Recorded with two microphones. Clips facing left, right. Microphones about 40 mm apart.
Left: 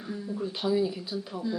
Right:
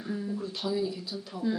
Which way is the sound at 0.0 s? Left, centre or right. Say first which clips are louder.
Right 2 dB; centre.